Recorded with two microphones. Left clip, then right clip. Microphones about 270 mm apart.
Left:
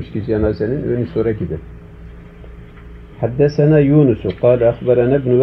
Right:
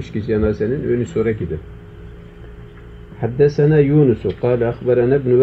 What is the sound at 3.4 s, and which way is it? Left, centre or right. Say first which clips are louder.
Speech: even; centre.